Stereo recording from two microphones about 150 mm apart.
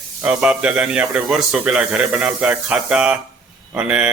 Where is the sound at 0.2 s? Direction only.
5° right (ahead or behind).